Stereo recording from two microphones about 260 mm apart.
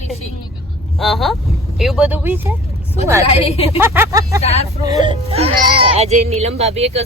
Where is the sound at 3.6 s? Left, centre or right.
Centre.